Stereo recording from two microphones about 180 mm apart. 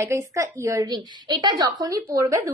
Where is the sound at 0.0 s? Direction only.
15° right (ahead or behind).